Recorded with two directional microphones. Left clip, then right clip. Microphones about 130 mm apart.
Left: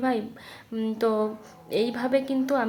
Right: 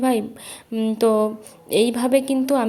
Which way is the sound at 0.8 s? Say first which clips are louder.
Right 7 dB; 40° right (ahead or behind).